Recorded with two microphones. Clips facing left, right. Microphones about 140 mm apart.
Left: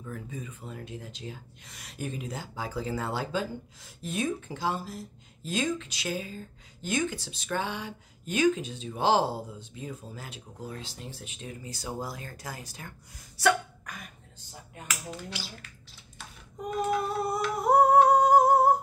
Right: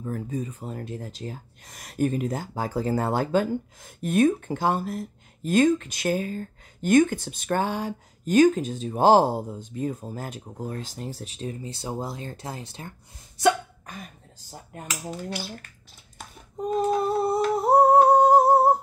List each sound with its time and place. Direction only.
0.0 s speech: 40° right (ahead or behind)
13.4 s a sound: 25° right (ahead or behind)
14.5 s a sound: 45° right (ahead or behind)
15.2 s speech: 50° right (ahead or behind)
16.6 s female singing: 30° right (ahead or behind)
17.6 s humming: 30° right (ahead or behind)